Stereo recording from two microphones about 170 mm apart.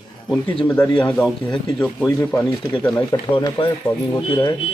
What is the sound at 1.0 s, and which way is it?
A man's voice, 5° left (ahead or behind).